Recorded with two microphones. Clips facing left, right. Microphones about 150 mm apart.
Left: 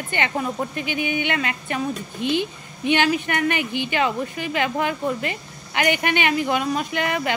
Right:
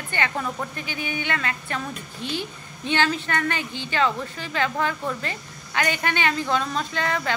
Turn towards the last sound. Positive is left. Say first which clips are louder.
# left 2 dB
turn(degrees=15)  # may be behind; listen again after turning